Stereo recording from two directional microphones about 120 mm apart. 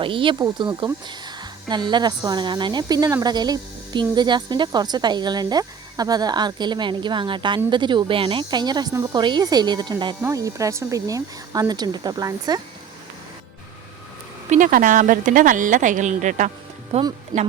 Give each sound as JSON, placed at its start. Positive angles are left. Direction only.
{"t": 0.0, "sound": "speech", "side_deg": -45}
{"t": 0.3, "sound": "speech", "side_deg": -35}
{"t": 10.2, "sound": "speech", "side_deg": -25}
{"t": 14.5, "sound": "speech", "side_deg": -90}
{"t": 16.9, "sound": "speech", "side_deg": -65}
{"t": 17.3, "sound": "speech", "side_deg": -35}